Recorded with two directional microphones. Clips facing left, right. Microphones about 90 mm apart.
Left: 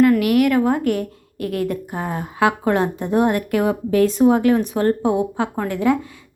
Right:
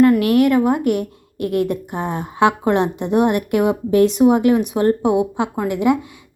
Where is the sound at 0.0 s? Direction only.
25° right (ahead or behind).